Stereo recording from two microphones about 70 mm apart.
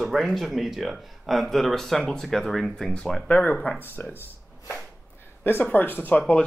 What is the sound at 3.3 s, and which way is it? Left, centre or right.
Speech, left.